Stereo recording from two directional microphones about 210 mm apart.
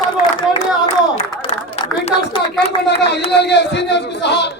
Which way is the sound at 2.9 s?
55° left (ahead or behind).